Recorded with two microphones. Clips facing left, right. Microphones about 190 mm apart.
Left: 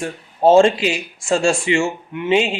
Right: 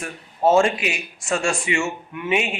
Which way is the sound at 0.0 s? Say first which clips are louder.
Left 5 dB; 30° left (ahead or behind).